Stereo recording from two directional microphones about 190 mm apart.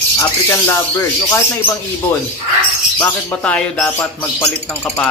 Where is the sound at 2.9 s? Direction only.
10° left (ahead or behind).